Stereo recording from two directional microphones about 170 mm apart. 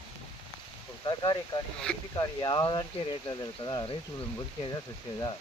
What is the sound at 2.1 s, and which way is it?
Speech, 25° left (ahead or behind).